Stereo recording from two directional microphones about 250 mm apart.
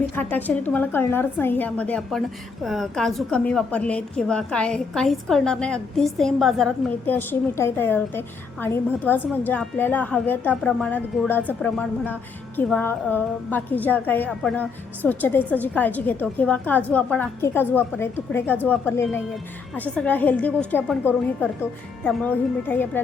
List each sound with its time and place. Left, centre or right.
0.2 s a woman's voice: centre